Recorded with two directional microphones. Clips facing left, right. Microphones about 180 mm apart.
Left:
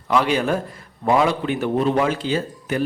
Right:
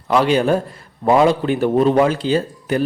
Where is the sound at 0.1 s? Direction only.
30° right (ahead or behind).